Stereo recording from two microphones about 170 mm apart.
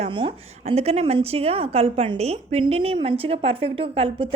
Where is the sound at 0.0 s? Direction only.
30° right (ahead or behind).